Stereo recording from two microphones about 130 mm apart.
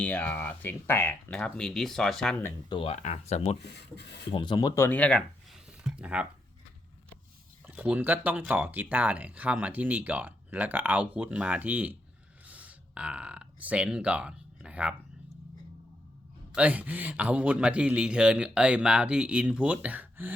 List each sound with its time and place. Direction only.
0.0 s speech: 10° left (ahead or behind)
2.6 s speech: 40° left (ahead or behind)
3.0 s speech: 60° left (ahead or behind)
4.3 s speech: 35° left (ahead or behind)
4.7 s speech: 15° left (ahead or behind)
5.5 s a sound: 5° right (ahead or behind)
7.7 s speech: 10° right (ahead or behind)
16.6 s speech: 10° right (ahead or behind)